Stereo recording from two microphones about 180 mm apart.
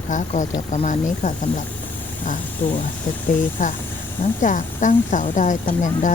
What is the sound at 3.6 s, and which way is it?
Speech, 45° left (ahead or behind).